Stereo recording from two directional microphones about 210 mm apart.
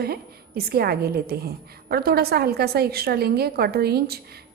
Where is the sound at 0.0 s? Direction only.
45° right (ahead or behind).